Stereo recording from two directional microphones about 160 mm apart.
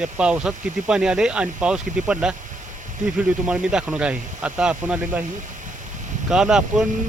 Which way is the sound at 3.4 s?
5° right (ahead or behind).